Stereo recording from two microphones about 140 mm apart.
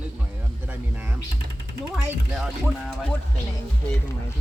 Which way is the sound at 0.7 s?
10° right (ahead or behind).